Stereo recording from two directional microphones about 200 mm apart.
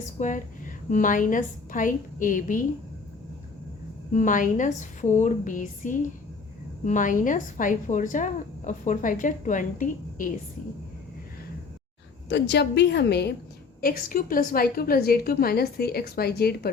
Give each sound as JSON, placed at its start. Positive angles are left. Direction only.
{"t": 0.0, "sound": "a woman's voice", "side_deg": 40}
{"t": 4.1, "sound": "a woman's voice", "side_deg": 40}
{"t": 12.3, "sound": "a woman's voice", "side_deg": 60}
{"t": 13.8, "sound": "a woman's voice", "side_deg": 45}